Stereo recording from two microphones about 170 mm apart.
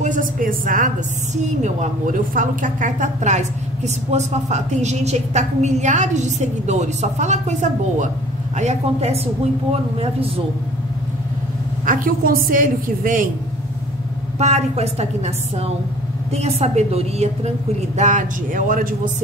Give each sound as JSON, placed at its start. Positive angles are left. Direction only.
{"t": 0.0, "sound": "a woman's voice", "side_deg": -50}
{"t": 11.8, "sound": "a woman's voice", "side_deg": -55}
{"t": 14.4, "sound": "a woman's voice", "side_deg": -40}